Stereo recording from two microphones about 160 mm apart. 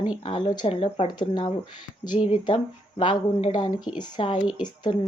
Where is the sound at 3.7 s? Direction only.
5° right (ahead or behind).